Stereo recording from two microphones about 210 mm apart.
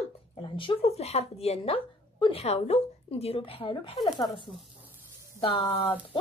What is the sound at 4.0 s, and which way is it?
Speech, centre (ahead or behind).